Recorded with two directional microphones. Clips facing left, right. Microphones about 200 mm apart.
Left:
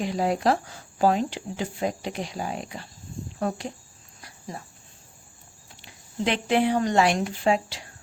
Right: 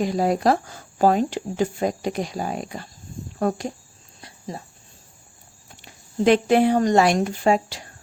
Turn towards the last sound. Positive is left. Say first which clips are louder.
# right 3 dB
turn(degrees=-45)  # may be behind; listen again after turning